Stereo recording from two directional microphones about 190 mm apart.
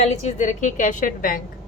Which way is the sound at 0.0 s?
35° left (ahead or behind).